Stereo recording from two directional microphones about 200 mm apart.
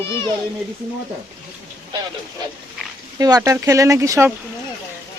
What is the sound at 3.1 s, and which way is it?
Speech, 15° right (ahead or behind).